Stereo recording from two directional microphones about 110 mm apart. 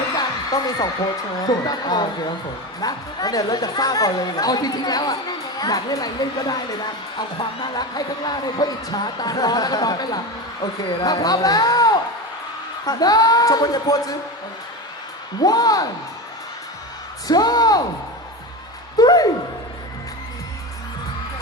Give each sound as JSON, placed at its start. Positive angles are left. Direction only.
{"t": 0.2, "sound": "music", "side_deg": 35}
{"t": 1.5, "sound": "speech", "side_deg": 40}
{"t": 7.8, "sound": "speech", "side_deg": 40}
{"t": 15.4, "sound": "speech", "side_deg": 35}
{"t": 17.2, "sound": "speech", "side_deg": 35}
{"t": 18.9, "sound": "speech", "side_deg": 35}